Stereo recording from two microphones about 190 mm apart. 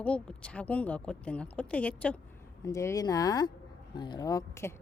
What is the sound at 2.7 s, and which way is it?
Speech, 15° left (ahead or behind).